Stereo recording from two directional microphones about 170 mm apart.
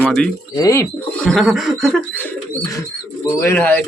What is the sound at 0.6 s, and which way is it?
Speech, 20° left (ahead or behind).